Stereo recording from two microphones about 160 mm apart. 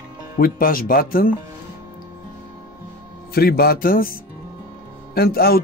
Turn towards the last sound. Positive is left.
turn(degrees=70)  # may be behind; listen again after turning